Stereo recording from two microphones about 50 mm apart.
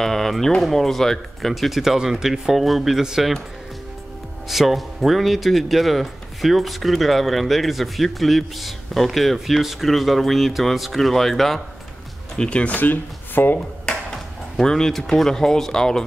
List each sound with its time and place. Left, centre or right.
0.0 s speech: centre
4.5 s speech: centre
12.4 s speech: left
12.7 s speech: left
14.1 s speech: centre